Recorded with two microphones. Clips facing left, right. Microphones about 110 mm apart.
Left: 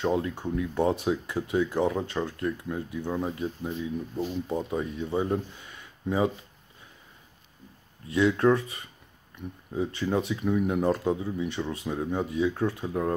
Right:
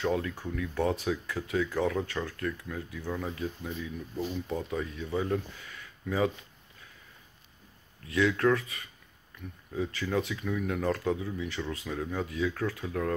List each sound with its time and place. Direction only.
0.0 s speech: 25° left (ahead or behind)
8.1 s speech: 25° left (ahead or behind)